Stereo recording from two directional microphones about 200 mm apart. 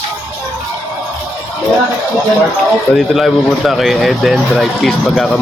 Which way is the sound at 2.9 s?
Centre (ahead or behind).